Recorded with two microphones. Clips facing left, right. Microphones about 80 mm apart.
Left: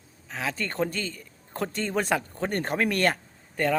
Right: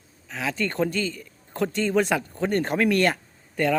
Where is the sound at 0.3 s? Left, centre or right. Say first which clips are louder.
Right 3 dB; left.